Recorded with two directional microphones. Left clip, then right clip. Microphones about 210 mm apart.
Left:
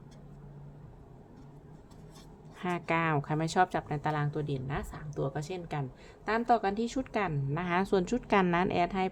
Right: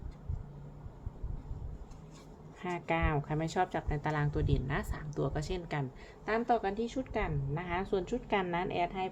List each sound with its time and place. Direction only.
2.6 s a woman's voice: 15° left (ahead or behind)
6.2 s a woman's voice: 15° left (ahead or behind)